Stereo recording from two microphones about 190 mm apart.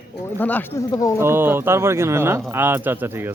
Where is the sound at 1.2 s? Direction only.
10° right (ahead or behind).